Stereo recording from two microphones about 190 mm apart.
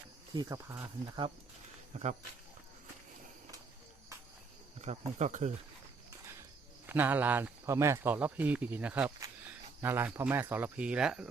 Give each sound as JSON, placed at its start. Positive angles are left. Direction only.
{"t": 0.3, "sound": "speech", "side_deg": -15}
{"t": 1.9, "sound": "speech", "side_deg": -35}
{"t": 4.8, "sound": "speech", "side_deg": -35}
{"t": 6.8, "sound": "speech", "side_deg": -10}